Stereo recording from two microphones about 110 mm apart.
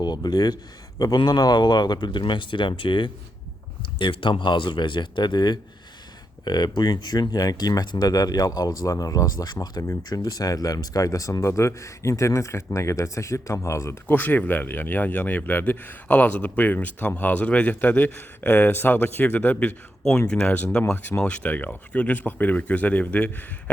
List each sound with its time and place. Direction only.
0.0 s speech: 40° left (ahead or behind); by 20.8 s 10° left (ahead or behind)
20.8 s speech: 25° left (ahead or behind)
21.2 s speech: 10° left (ahead or behind)